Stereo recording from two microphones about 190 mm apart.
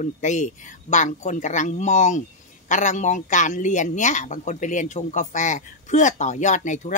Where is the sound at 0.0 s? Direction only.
40° left (ahead or behind).